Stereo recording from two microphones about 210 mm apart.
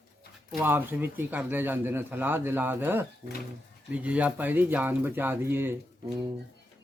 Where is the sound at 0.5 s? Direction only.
10° right (ahead or behind).